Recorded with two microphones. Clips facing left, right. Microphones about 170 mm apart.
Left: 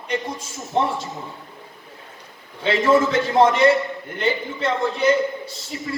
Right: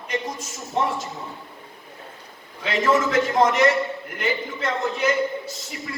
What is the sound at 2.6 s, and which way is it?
A man's voice, 30° left (ahead or behind).